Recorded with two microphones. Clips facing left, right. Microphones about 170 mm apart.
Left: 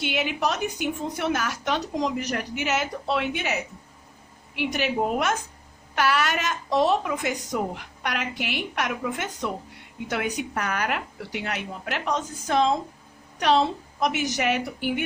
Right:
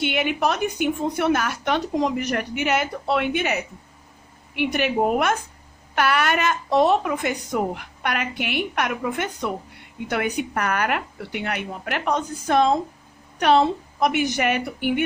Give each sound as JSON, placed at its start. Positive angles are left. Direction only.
{"t": 0.0, "sound": "speech", "side_deg": -55}
{"t": 4.5, "sound": "speech", "side_deg": -55}